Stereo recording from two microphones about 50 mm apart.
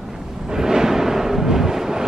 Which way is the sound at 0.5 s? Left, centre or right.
Centre.